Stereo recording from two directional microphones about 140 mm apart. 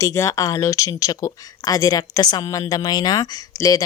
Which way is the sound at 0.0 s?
25° left (ahead or behind).